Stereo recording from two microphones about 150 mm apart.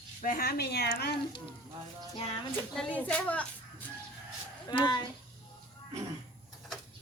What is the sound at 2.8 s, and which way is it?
Speech, 10° left (ahead or behind).